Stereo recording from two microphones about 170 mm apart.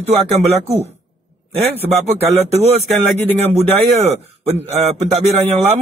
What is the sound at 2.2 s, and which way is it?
A man's voice, 40° right (ahead or behind).